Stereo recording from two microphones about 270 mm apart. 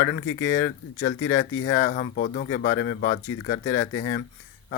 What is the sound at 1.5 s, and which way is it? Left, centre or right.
Speech, left.